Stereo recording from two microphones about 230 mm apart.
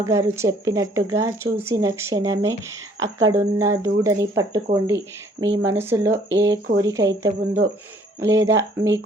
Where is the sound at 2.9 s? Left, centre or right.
Right.